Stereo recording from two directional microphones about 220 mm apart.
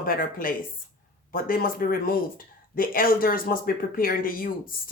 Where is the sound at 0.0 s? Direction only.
40° left (ahead or behind).